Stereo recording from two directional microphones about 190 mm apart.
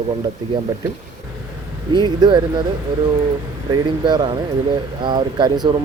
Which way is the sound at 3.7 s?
20° right (ahead or behind).